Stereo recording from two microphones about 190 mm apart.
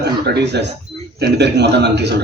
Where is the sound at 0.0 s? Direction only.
60° right (ahead or behind).